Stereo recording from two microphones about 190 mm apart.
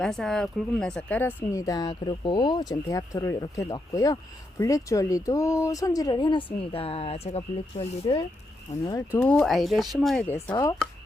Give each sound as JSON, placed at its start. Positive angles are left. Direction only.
{"t": 0.0, "sound": "speech", "side_deg": 5}
{"t": 8.8, "sound": "speech", "side_deg": 20}
{"t": 10.2, "sound": "speech", "side_deg": 10}